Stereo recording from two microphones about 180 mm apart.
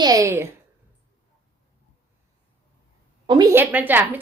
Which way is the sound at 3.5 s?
10° right (ahead or behind).